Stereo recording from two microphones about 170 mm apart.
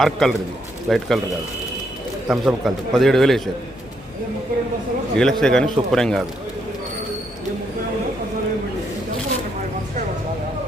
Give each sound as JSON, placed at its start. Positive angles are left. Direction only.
{"t": 0.0, "sound": "a man's voice", "side_deg": 0}
{"t": 2.2, "sound": "a man's voice", "side_deg": 0}
{"t": 5.1, "sound": "a man's voice", "side_deg": 0}